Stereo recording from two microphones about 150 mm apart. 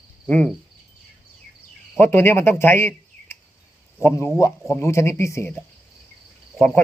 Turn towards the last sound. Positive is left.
turn(degrees=15)  # may be behind; listen again after turning